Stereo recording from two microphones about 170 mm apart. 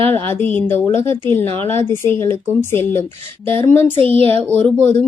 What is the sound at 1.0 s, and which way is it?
Speech, 30° right (ahead or behind).